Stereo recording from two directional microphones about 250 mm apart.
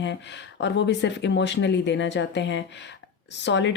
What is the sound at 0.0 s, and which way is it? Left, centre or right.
Speech, left.